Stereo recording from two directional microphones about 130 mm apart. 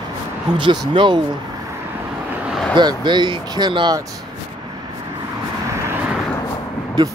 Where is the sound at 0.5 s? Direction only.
40° right (ahead or behind).